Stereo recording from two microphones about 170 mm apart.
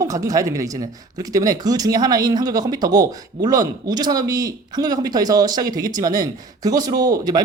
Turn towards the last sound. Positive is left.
turn(degrees=-20)  # may be behind; listen again after turning